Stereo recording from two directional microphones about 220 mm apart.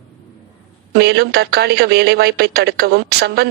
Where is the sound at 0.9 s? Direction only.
45° right (ahead or behind).